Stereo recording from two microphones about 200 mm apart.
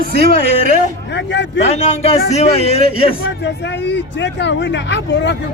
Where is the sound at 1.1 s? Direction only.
60° left (ahead or behind).